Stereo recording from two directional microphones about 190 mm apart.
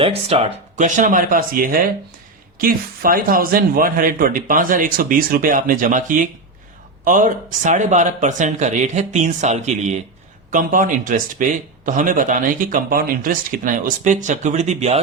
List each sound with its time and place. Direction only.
0.0 s a man's voice: 30° right (ahead or behind)